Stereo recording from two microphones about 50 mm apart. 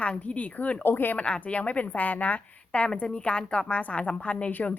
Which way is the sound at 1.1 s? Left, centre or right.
Left.